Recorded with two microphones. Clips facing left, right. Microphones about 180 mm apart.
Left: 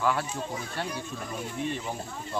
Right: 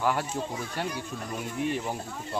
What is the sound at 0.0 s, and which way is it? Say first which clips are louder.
Speech: even; 10° right (ahead or behind).